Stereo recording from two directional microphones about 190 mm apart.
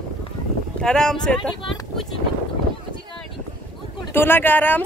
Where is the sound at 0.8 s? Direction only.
5° left (ahead or behind).